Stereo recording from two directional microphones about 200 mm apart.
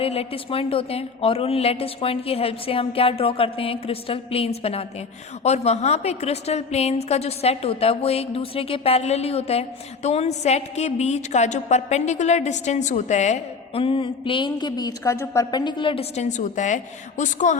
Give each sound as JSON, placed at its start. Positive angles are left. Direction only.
{"t": 0.0, "sound": "a woman's voice", "side_deg": 30}
{"t": 16.4, "sound": "a woman's voice", "side_deg": 40}